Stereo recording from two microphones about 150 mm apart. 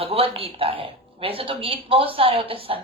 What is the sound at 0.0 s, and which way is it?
Speech, 40° right (ahead or behind).